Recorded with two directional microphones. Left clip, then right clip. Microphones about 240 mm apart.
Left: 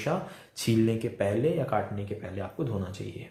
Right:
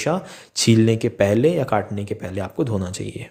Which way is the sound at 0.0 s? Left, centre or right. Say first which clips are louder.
Right 8 dB; right.